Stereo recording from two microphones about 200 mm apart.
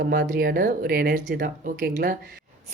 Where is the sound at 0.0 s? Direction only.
50° right (ahead or behind).